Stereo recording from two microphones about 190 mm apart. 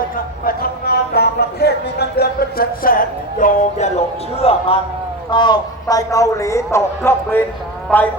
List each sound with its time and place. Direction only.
0.4 s a sound: 55° left (ahead or behind)
3.4 s speech: 35° left (ahead or behind)
5.3 s a man's voice: 25° left (ahead or behind)